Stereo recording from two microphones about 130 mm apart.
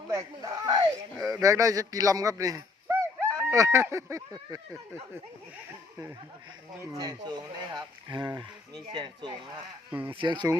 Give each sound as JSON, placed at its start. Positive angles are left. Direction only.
{"t": 0.1, "sound": "speech", "side_deg": -25}
{"t": 6.7, "sound": "speech", "side_deg": -30}
{"t": 9.9, "sound": "speech", "side_deg": -15}
{"t": 10.2, "sound": "speech", "side_deg": -35}